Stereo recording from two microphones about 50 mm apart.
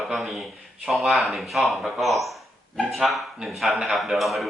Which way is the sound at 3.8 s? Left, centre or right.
Centre.